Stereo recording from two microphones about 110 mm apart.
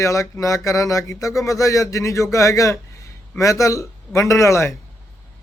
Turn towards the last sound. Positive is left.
turn(degrees=25)  # may be behind; listen again after turning